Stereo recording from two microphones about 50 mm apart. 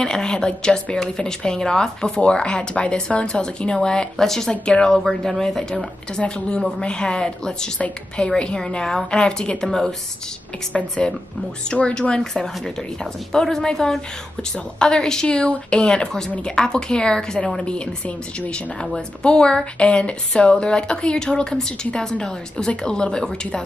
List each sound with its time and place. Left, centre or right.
0.0 s a woman's voice: centre
9.7 s a woman's voice: centre
10.7 s a woman's voice: left